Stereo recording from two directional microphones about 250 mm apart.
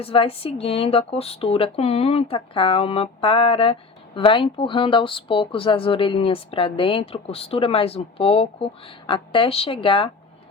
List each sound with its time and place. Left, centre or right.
0.0 s speech: left